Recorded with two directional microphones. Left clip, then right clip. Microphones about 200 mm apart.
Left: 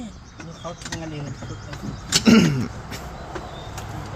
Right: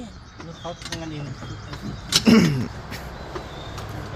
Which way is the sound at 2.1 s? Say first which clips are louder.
Left 1 dB; centre (ahead or behind).